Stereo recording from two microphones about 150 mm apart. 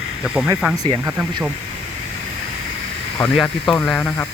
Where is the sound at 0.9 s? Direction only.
20° right (ahead or behind).